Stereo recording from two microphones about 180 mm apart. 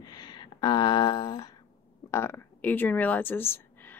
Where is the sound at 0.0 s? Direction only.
20° left (ahead or behind).